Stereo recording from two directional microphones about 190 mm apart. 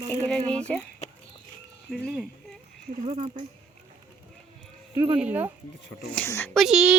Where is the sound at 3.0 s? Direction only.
35° right (ahead or behind).